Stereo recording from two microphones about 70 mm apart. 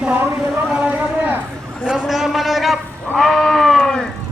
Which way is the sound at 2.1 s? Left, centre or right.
Centre.